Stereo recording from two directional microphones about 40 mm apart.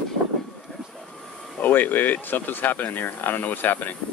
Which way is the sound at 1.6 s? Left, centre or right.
Left.